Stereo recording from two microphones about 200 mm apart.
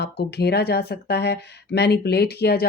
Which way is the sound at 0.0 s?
55° left (ahead or behind).